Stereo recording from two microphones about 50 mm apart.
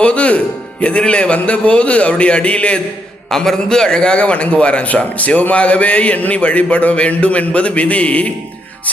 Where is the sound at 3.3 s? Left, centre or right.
Centre.